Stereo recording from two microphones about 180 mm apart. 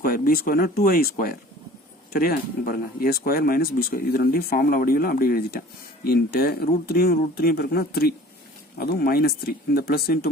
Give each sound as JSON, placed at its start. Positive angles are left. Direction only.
{"t": 0.0, "sound": "speech", "side_deg": 55}